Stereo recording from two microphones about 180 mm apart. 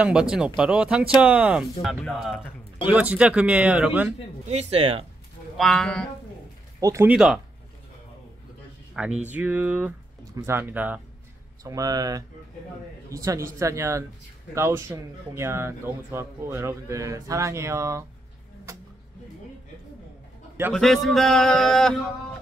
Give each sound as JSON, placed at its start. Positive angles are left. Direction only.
{"t": 0.0, "sound": "speech", "side_deg": -5}
{"t": 4.5, "sound": "speech", "side_deg": -35}
{"t": 5.6, "sound": "speech", "side_deg": 5}
{"t": 6.8, "sound": "speech", "side_deg": -15}
{"t": 7.1, "sound": "speech", "side_deg": -5}
{"t": 8.9, "sound": "speech", "side_deg": -5}
{"t": 11.6, "sound": "a man's voice", "side_deg": -20}
{"t": 20.7, "sound": "speech", "side_deg": 0}